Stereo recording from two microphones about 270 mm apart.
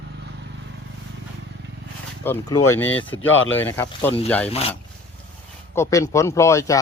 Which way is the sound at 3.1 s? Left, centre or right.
Left.